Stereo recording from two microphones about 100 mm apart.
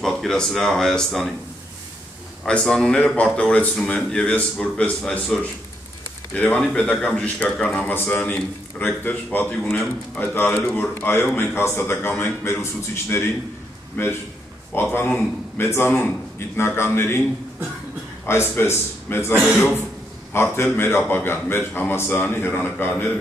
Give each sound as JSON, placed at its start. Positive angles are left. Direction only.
{"t": 0.0, "sound": "speech", "side_deg": 5}
{"t": 2.4, "sound": "a man's voice", "side_deg": 5}
{"t": 18.3, "sound": "a man's voice", "side_deg": 25}
{"t": 20.3, "sound": "a man's voice", "side_deg": 25}